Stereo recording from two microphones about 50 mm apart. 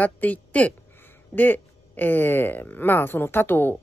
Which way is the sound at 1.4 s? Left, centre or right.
Left.